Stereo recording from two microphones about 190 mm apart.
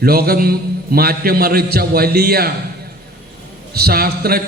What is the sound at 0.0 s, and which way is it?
A man's voice, 55° right (ahead or behind).